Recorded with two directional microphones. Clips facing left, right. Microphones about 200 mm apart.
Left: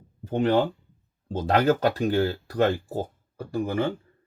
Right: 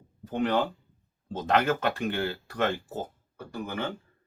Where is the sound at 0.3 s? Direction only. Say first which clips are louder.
Left 5 dB; 25° left (ahead or behind).